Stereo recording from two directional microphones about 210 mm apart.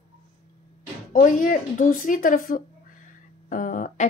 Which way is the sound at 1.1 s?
40° left (ahead or behind).